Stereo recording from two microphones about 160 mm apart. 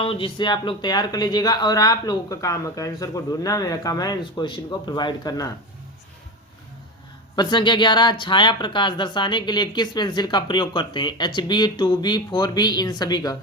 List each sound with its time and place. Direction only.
0.0 s speech: 35° left (ahead or behind)
7.3 s speech: 30° left (ahead or behind)